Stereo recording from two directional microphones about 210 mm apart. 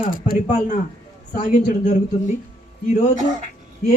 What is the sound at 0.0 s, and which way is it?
Speech, 40° left (ahead or behind).